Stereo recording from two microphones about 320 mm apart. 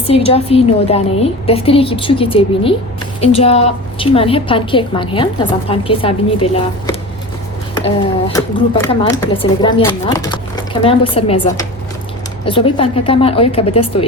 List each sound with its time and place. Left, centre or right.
0.1 s a woman's voice: centre